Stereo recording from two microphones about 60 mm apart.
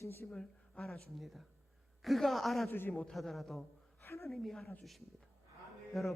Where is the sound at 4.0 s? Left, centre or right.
Left.